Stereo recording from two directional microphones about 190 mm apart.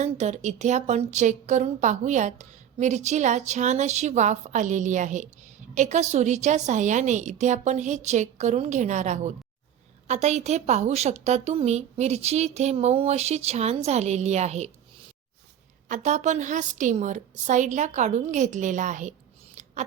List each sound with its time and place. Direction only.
0.0 s speech: 35° right (ahead or behind)
15.9 s speech: 40° right (ahead or behind)
19.6 s a sound: 40° right (ahead or behind)